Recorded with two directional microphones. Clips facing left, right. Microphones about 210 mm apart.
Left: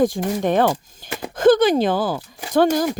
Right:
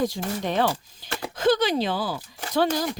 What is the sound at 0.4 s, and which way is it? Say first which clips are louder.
Speech: left 6 dB; 50° left (ahead or behind).